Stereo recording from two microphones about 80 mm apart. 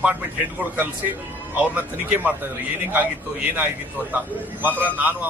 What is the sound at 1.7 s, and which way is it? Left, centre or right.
A man's voice, right.